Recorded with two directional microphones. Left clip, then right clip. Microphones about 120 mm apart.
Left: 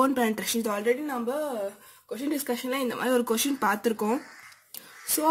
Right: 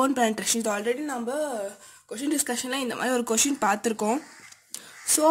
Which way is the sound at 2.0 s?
20° right (ahead or behind).